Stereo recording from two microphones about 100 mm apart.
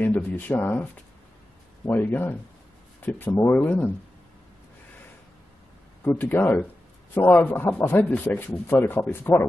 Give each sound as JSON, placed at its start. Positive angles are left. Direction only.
{"t": 0.0, "sound": "speech", "side_deg": 20}
{"t": 1.9, "sound": "speech", "side_deg": 20}
{"t": 6.0, "sound": "speech", "side_deg": 20}